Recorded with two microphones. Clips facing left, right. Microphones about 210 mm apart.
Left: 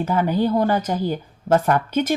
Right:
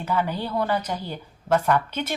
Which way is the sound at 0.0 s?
45° left (ahead or behind).